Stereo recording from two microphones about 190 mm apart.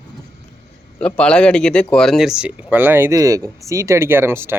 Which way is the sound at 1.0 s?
5° left (ahead or behind).